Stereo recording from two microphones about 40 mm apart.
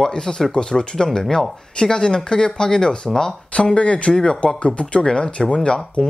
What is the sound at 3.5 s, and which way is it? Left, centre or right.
Speech, left.